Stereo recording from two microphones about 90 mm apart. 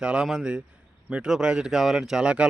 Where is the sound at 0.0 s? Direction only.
10° right (ahead or behind).